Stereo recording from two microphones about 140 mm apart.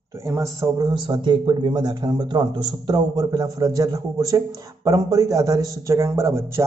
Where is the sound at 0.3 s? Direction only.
20° right (ahead or behind).